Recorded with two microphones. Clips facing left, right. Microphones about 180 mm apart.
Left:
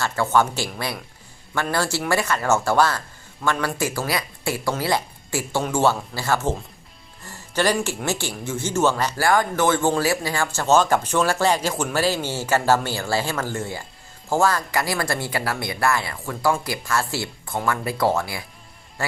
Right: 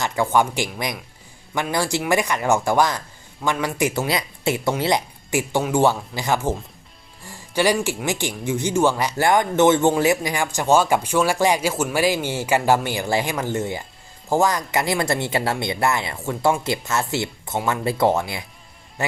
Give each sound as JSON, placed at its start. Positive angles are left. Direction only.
{"t": 0.0, "sound": "speech", "side_deg": -15}
{"t": 7.2, "sound": "music", "side_deg": -10}
{"t": 7.9, "sound": "speech", "side_deg": -15}